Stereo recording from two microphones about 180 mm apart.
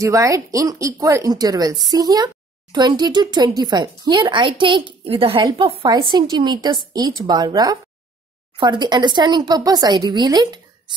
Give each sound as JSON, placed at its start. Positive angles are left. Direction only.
{"t": 0.0, "sound": "speech", "side_deg": -15}